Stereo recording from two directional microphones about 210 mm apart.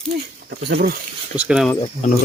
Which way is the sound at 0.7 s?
50° right (ahead or behind).